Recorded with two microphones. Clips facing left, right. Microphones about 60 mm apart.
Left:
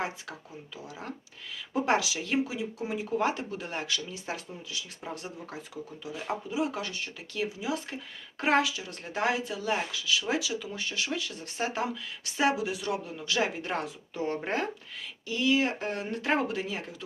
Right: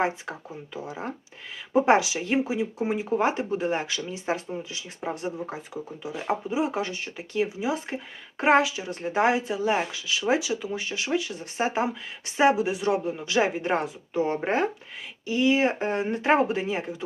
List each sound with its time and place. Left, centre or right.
0.0 s speech: right